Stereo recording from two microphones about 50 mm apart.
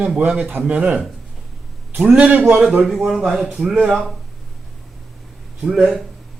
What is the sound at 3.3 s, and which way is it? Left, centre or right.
Speech, centre.